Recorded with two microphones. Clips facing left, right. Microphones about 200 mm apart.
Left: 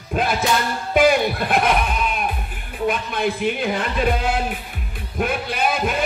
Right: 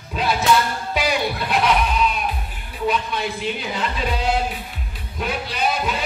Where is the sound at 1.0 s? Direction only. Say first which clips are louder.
Left 7 dB; 50° left (ahead or behind).